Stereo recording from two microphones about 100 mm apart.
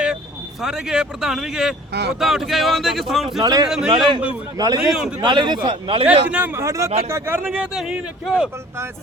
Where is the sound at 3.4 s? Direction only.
35° right (ahead or behind); by 6.3 s 80° right.